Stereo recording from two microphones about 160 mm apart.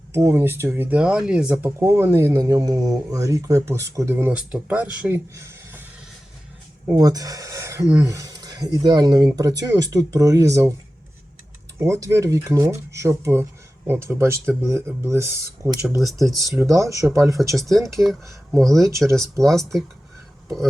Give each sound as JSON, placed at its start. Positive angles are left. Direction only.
{"t": 0.1, "sound": "speech", "side_deg": -20}
{"t": 6.9, "sound": "speech", "side_deg": -20}
{"t": 11.8, "sound": "speech", "side_deg": -20}
{"t": 17.7, "sound": "speech", "side_deg": 0}
{"t": 18.9, "sound": "speech", "side_deg": -20}
{"t": 19.1, "sound": "speech", "side_deg": 0}